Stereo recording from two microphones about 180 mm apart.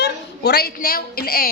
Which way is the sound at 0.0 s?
65° left (ahead or behind).